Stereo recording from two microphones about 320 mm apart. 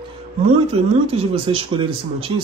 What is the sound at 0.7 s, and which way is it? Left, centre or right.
Speech, centre.